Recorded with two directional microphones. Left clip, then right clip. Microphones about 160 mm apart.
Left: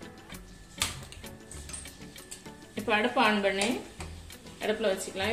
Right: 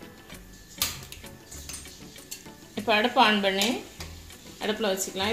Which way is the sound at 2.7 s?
45° right (ahead or behind).